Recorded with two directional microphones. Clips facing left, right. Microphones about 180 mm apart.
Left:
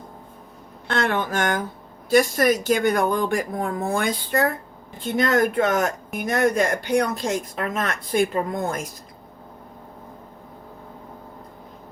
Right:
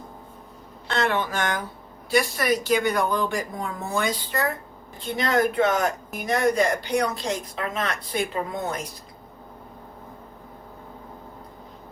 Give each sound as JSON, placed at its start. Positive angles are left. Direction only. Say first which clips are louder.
{"t": 0.9, "sound": "speech", "louder": "left 1 dB", "side_deg": 50}